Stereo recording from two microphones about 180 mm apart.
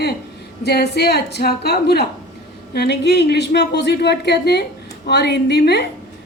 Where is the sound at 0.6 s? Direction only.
65° left (ahead or behind).